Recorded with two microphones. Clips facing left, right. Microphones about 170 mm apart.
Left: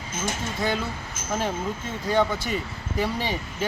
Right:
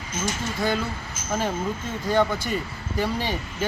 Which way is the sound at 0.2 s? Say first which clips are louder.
Right 1 dB; 55° left (ahead or behind).